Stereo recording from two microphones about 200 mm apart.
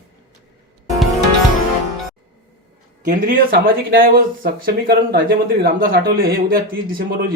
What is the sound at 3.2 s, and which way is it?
Speech, 45° right (ahead or behind).